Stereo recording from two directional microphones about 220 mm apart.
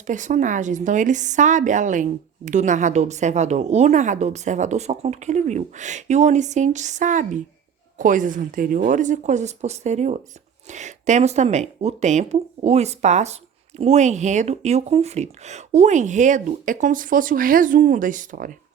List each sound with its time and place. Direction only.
0.1 s speech: 35° right (ahead or behind)